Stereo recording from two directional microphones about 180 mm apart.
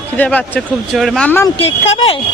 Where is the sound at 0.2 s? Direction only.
10° left (ahead or behind).